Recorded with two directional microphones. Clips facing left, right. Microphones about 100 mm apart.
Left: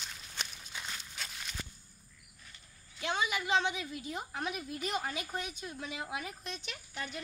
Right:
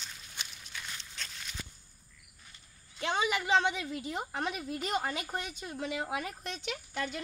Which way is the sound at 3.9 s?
65° right (ahead or behind).